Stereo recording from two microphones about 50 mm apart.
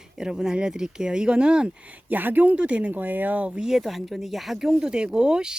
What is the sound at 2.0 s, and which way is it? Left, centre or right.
Speech, right.